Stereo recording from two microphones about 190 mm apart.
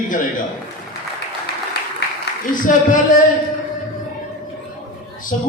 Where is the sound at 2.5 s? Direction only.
45° left (ahead or behind).